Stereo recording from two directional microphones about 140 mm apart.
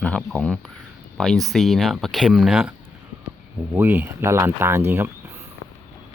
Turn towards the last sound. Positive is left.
turn(degrees=-15)  # may be behind; listen again after turning